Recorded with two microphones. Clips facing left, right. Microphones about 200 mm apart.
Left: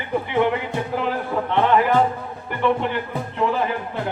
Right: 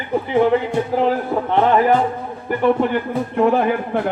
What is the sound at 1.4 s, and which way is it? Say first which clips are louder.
Speech: right 3 dB; 40° right (ahead or behind).